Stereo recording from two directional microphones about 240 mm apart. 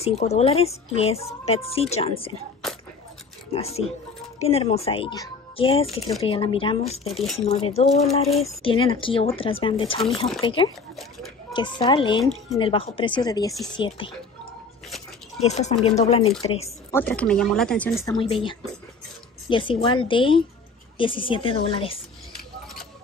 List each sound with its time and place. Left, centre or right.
0.0 s a woman's voice: left
3.5 s a woman's voice: left
15.4 s a woman's voice: left
16.6 s a woman's voice: centre